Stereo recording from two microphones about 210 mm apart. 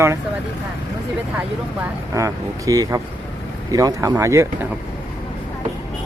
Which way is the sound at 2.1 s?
15° right (ahead or behind).